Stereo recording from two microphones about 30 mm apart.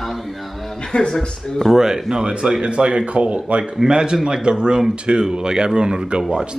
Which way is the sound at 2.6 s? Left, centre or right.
Right.